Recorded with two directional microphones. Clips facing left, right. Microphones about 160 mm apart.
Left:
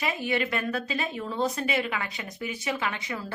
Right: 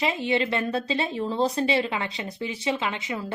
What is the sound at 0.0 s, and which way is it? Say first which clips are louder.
A woman's voice: right 4 dB; 25° right (ahead or behind).